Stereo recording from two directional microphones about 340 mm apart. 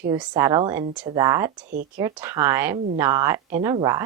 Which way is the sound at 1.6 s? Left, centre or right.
Right.